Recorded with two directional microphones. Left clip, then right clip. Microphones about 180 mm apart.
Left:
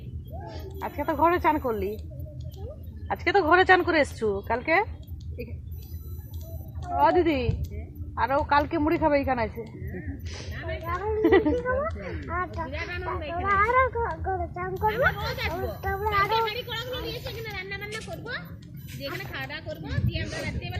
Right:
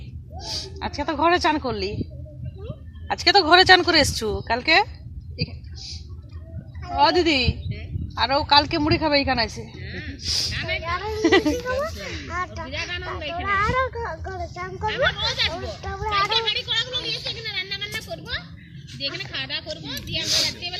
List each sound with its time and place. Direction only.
0.8 s a woman's voice: 50° right (ahead or behind)
3.1 s a woman's voice: 50° right (ahead or behind)
6.9 s a woman's voice: 45° right (ahead or behind)
10.5 s a woman's voice: 15° left (ahead or behind)
10.8 s a woman's voice: 30° left (ahead or behind)
11.2 s speech: 40° right (ahead or behind)
11.6 s speech: 45° left (ahead or behind)
18.1 s a sound: 60° left (ahead or behind)
19.0 s speech: 50° left (ahead or behind)